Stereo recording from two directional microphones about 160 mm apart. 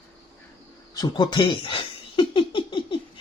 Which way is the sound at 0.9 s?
25° left (ahead or behind).